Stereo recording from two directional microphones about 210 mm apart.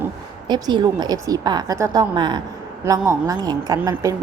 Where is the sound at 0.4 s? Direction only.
20° right (ahead or behind).